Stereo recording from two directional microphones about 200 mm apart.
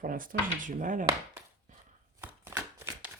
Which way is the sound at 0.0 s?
45° right (ahead or behind).